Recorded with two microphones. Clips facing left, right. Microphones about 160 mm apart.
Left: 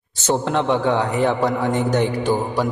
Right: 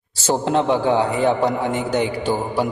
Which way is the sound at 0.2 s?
35° right (ahead or behind).